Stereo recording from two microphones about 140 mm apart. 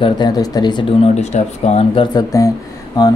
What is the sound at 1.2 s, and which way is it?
Speech, 55° left (ahead or behind).